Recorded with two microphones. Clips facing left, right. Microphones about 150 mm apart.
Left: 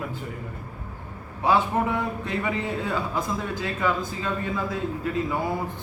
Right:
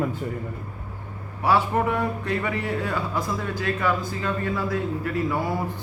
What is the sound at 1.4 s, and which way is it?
Speech, 20° left (ahead or behind).